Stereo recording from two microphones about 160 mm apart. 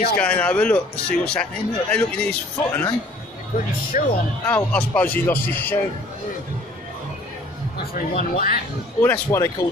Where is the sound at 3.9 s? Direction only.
50° left (ahead or behind).